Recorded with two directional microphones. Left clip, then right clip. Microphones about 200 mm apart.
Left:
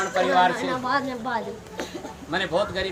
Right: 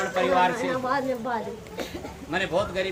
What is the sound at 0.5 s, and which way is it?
Speech, 55° left (ahead or behind).